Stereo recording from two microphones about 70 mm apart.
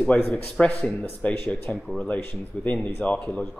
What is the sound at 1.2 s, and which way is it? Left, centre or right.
Speech, centre.